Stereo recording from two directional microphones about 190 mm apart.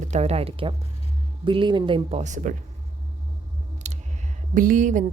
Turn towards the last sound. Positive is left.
turn(degrees=-40)  # may be behind; listen again after turning